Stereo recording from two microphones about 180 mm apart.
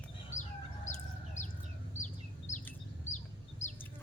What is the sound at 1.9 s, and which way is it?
Chicken, 40° left (ahead or behind).